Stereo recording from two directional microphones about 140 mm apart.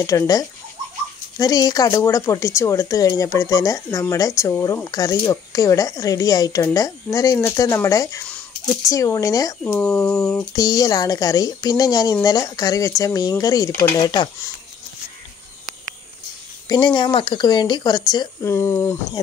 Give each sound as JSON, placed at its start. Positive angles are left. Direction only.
{"t": 0.0, "sound": "speech", "side_deg": 25}
{"t": 9.8, "sound": "a sound", "side_deg": 10}
{"t": 10.5, "sound": "speech", "side_deg": 25}
{"t": 16.6, "sound": "speech", "side_deg": 30}
{"t": 18.4, "sound": "speech", "side_deg": 20}